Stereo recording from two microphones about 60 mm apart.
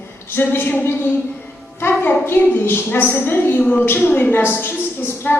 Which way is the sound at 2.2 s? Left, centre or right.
Left.